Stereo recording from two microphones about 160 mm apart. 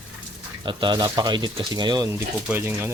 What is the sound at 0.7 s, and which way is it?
Speech, 30° right (ahead or behind).